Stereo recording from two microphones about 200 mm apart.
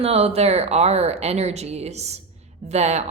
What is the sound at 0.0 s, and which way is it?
A woman's voice, 30° right (ahead or behind).